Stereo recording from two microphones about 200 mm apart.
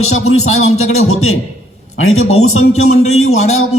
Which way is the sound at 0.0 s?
90° left.